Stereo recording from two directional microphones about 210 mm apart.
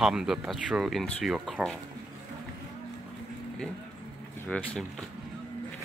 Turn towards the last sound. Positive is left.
turn(degrees=5)  # may be behind; listen again after turning